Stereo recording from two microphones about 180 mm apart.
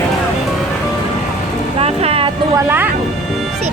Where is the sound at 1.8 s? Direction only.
35° right (ahead or behind).